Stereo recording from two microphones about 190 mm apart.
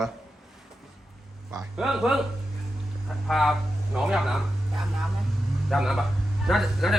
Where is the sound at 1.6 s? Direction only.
Centre (ahead or behind).